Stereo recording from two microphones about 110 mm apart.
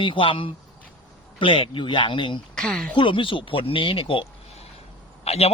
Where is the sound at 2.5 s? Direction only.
5° left (ahead or behind).